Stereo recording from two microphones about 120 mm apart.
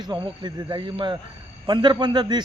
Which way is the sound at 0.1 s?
40° right (ahead or behind).